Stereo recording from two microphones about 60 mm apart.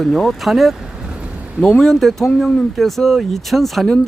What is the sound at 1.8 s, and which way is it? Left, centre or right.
Speech, centre.